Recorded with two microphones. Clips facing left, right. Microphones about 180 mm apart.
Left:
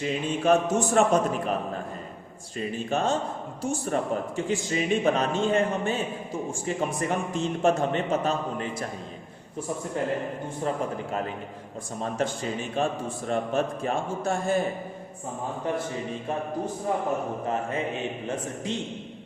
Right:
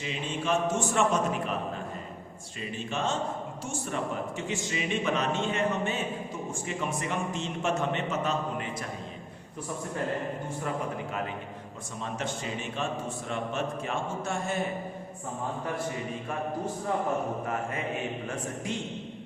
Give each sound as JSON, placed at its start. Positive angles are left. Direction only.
{"t": 0.0, "sound": "speech", "side_deg": 45}
{"t": 2.6, "sound": "speech", "side_deg": 40}
{"t": 11.9, "sound": "speech", "side_deg": 35}